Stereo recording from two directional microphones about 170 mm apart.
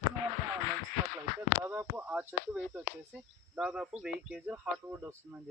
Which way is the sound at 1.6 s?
10° right (ahead or behind).